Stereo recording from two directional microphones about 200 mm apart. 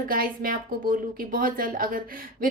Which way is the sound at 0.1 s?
45° right (ahead or behind).